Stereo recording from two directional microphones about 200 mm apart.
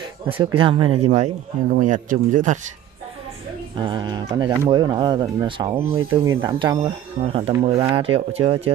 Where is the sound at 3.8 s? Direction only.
20° right (ahead or behind).